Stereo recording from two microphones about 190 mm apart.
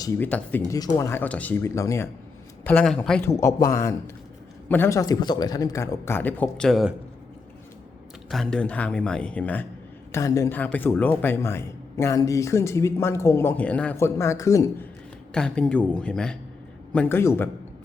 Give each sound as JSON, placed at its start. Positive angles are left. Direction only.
{"t": 0.0, "sound": "a man's voice", "side_deg": 15}
{"t": 3.2, "sound": "a man's voice", "side_deg": 15}
{"t": 8.3, "sound": "a man's voice", "side_deg": 5}
{"t": 15.3, "sound": "a woman's voice", "side_deg": 5}